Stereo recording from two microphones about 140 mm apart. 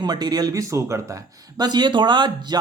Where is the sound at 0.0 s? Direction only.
30° right (ahead or behind).